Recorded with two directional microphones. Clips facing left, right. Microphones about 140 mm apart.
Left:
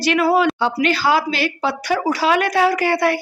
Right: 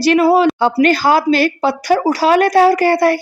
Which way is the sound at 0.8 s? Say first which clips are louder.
Right 5 dB; 45° right (ahead or behind).